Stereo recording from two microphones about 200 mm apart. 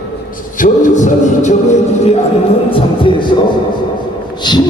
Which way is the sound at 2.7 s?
25° left (ahead or behind).